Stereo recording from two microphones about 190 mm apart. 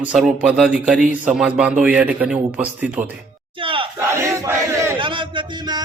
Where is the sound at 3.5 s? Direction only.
25° right (ahead or behind).